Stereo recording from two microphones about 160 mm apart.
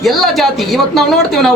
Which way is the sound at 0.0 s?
Centre (ahead or behind).